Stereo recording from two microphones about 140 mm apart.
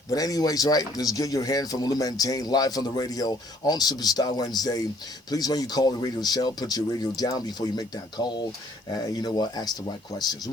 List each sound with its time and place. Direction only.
0.1 s speech: 25° left (ahead or behind)